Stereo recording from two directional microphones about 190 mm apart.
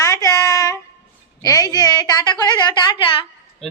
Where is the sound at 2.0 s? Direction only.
20° left (ahead or behind).